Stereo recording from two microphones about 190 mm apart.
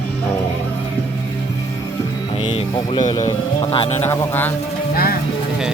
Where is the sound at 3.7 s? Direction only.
30° left (ahead or behind).